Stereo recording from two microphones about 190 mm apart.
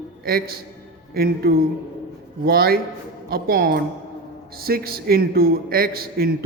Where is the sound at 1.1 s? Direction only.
55° right (ahead or behind).